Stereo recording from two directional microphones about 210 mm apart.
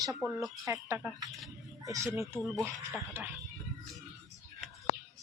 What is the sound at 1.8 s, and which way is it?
Speech, 15° right (ahead or behind).